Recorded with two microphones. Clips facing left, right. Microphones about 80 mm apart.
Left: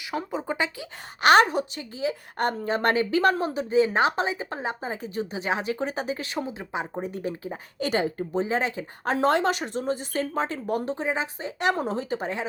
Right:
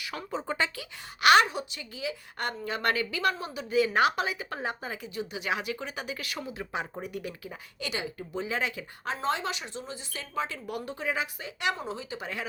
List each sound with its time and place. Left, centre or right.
0.1 s speech: centre
1.2 s a woman's voice: left
5.0 s a woman's voice: left
7.0 s a woman's voice: left
9.0 s speech: left
11.6 s speech: left